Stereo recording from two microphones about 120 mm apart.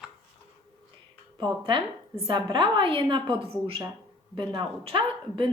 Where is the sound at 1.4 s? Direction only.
40° right (ahead or behind).